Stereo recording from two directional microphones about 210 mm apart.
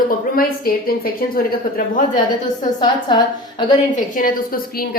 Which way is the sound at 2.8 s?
20° left (ahead or behind).